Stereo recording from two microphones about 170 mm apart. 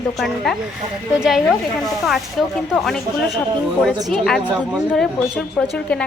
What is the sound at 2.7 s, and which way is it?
A woman's voice, centre (ahead or behind).